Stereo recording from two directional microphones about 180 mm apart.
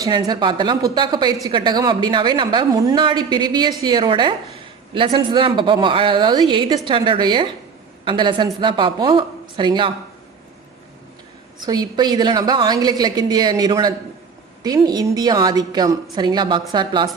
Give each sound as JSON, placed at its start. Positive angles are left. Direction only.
{"t": 0.0, "sound": "a woman's voice", "side_deg": -25}
{"t": 11.6, "sound": "a woman's voice", "side_deg": -20}